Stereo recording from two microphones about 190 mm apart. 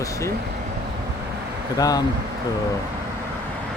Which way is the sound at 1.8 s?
20° left (ahead or behind).